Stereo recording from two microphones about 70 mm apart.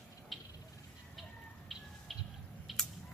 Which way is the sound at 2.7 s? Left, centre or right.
Centre.